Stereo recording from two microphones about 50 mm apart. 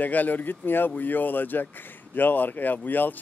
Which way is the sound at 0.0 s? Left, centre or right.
Left.